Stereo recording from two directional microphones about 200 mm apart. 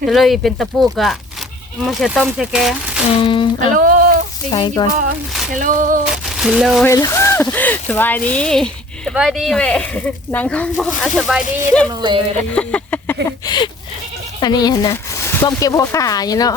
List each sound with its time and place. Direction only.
0.0 s speech: centre (ahead or behind)
3.1 s speech: 25° left (ahead or behind)
3.7 s a sound: 45° right (ahead or behind)
4.8 s speech: 20° left (ahead or behind)
5.5 s a sound: 40° right (ahead or behind)
6.2 s speech: centre (ahead or behind)
6.8 s speech: 15° left (ahead or behind)
11.9 s speech: 20° right (ahead or behind)
12.5 s speech: 5° left (ahead or behind)
13.2 s speech: 20° left (ahead or behind)